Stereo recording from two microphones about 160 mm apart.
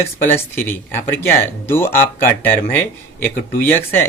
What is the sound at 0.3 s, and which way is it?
Speech, 15° left (ahead or behind).